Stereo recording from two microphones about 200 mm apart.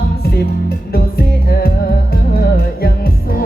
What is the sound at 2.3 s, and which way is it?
Music, 50° left (ahead or behind).